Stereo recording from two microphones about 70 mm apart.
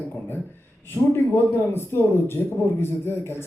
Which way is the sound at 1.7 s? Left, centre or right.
Left.